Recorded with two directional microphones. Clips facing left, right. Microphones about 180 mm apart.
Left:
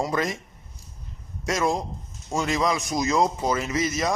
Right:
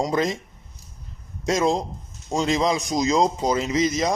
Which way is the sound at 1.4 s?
20° right (ahead or behind).